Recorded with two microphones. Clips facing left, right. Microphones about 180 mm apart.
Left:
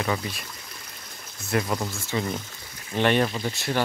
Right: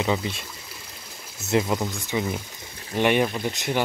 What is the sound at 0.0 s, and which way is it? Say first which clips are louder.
Speech: right 3 dB; 20° right (ahead or behind).